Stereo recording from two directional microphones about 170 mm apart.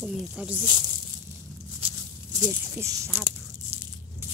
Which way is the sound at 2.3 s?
20° right (ahead or behind).